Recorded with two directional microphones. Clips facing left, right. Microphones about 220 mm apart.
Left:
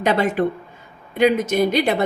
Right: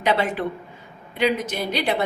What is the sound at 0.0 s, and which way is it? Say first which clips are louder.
A woman's voice: left 4 dB; 45° left (ahead or behind).